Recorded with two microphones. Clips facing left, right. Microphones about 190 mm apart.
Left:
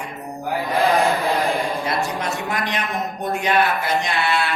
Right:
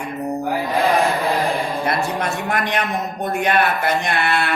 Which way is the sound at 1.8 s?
55° right (ahead or behind).